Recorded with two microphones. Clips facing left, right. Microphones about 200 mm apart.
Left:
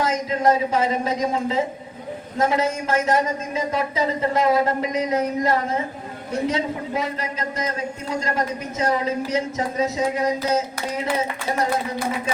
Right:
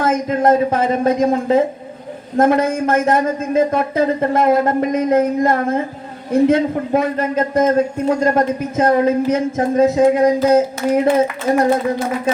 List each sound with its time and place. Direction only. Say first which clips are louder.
0.0 s a man's voice: right 5 dB; 50° right (ahead or behind)